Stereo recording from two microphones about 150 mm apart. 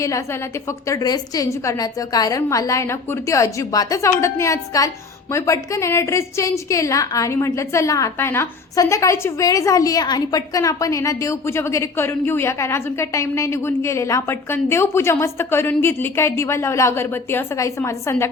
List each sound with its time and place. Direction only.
0.9 s a woman's voice: 25° left (ahead or behind)